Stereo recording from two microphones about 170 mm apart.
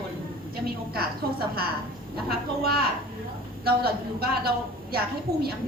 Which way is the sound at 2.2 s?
65° right (ahead or behind).